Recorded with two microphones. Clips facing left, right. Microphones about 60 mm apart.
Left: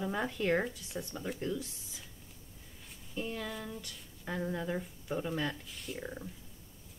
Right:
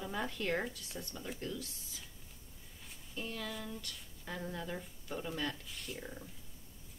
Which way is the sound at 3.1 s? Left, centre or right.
Centre.